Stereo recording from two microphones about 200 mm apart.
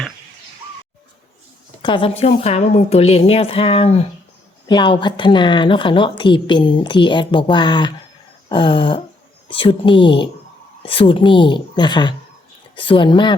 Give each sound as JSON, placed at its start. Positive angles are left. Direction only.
{"t": 1.8, "sound": "a woman's voice", "side_deg": 25}